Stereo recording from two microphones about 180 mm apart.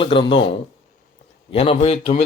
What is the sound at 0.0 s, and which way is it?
Speech, 30° left (ahead or behind).